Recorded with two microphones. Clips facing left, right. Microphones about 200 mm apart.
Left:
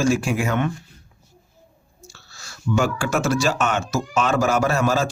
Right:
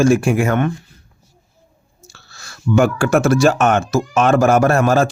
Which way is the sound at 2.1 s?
60° right (ahead or behind).